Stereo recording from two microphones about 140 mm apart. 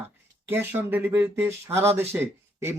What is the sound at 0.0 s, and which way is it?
Speech, 15° right (ahead or behind).